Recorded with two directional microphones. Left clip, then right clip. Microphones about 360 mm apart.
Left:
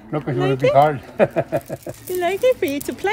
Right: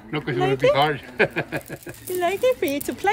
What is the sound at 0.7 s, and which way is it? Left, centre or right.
Speech, centre.